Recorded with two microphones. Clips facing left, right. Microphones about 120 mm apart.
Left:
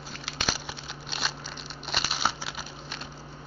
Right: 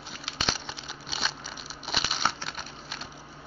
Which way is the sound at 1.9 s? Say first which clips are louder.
Even; centre (ahead or behind).